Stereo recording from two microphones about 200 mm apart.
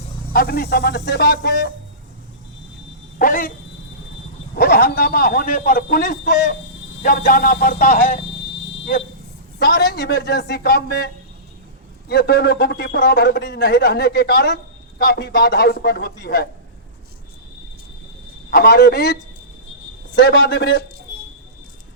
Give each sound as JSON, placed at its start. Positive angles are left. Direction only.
{"t": 0.3, "sound": "a man's voice", "side_deg": 50}
{"t": 3.2, "sound": "a man's voice", "side_deg": 45}
{"t": 4.5, "sound": "a man's voice", "side_deg": 50}
{"t": 9.6, "sound": "a man's voice", "side_deg": 55}
{"t": 18.5, "sound": "a man's voice", "side_deg": 50}